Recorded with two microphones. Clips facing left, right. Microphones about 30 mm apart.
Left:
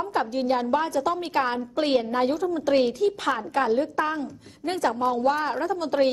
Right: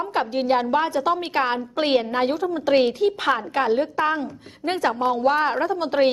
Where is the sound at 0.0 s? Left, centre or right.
Right.